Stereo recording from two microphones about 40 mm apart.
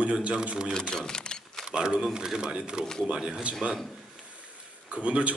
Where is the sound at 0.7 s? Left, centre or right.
Centre.